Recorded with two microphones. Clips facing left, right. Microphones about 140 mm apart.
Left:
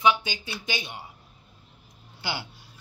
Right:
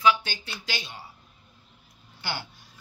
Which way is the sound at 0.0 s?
15° left (ahead or behind).